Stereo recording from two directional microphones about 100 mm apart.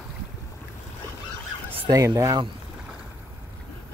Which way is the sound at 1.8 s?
35° right (ahead or behind).